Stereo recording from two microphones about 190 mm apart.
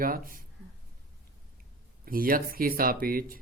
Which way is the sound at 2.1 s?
50° right (ahead or behind).